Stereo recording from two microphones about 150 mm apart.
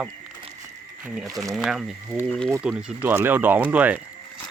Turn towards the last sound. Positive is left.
turn(degrees=-10)  # may be behind; listen again after turning